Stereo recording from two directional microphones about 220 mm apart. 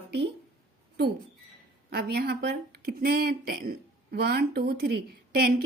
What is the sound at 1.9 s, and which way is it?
Speech, 45° right (ahead or behind).